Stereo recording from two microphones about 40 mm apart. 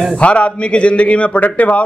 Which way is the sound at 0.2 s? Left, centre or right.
Left.